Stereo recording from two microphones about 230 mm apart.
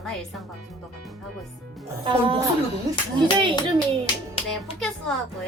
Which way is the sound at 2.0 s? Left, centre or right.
Right.